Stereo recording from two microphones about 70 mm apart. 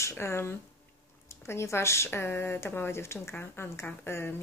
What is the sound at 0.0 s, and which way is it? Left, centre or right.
A woman's voice, left.